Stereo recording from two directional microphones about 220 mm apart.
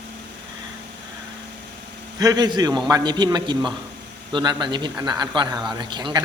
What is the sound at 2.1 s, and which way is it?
A man's voice, 15° right (ahead or behind).